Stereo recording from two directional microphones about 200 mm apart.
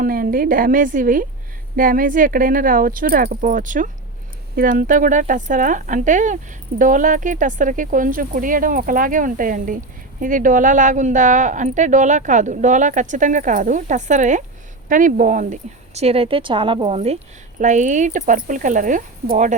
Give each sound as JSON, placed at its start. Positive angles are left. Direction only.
{"t": 0.0, "sound": "speech", "side_deg": -45}
{"t": 16.0, "sound": "speech", "side_deg": -30}